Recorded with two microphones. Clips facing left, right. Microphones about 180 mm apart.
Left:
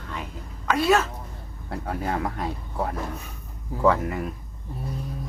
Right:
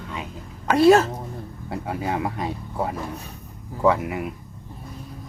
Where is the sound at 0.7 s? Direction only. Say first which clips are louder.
Right 7 dB; 30° right (ahead or behind).